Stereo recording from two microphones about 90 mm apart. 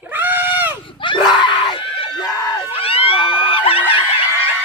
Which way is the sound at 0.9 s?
65° left (ahead or behind).